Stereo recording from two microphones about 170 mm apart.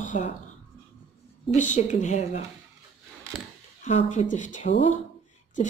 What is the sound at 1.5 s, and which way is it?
Speech, 45° left (ahead or behind).